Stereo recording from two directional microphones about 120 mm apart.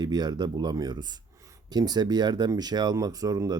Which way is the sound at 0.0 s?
35° right (ahead or behind).